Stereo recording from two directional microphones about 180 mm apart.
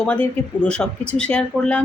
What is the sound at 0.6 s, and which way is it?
Speech, 5° left (ahead or behind).